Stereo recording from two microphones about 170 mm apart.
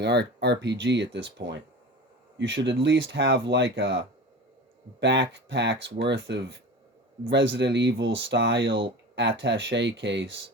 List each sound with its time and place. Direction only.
0.0 s speech: 90° right